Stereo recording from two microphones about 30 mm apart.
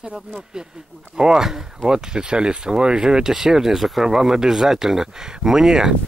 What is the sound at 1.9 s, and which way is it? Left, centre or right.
Speech, right.